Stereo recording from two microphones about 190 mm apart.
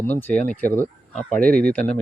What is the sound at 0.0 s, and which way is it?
Speech, 10° left (ahead or behind).